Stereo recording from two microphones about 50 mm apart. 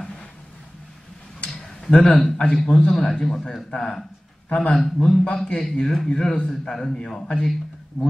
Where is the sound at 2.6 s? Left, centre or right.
Left.